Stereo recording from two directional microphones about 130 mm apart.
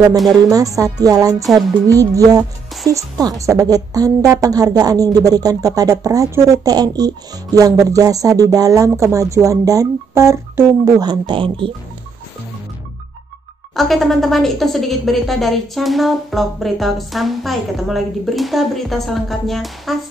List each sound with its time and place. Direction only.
0.5 s a woman's voice: 25° right (ahead or behind)
11.0 s speech: 35° right (ahead or behind)
13.7 s a woman's voice: centre (ahead or behind)